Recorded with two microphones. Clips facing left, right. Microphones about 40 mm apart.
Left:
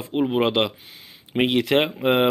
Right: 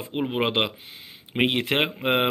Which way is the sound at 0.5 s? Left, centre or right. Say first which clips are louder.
Left 3 dB; right.